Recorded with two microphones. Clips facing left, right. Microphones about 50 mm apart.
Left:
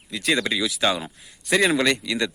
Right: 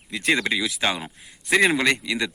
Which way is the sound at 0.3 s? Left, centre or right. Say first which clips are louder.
Even; centre.